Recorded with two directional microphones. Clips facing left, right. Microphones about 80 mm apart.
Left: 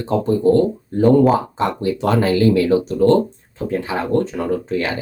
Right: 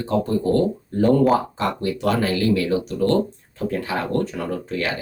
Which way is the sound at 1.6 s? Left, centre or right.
Left.